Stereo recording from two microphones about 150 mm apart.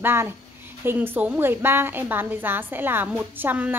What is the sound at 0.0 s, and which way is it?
A woman's voice, 15° right (ahead or behind).